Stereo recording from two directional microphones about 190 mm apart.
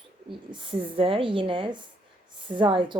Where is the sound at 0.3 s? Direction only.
25° right (ahead or behind).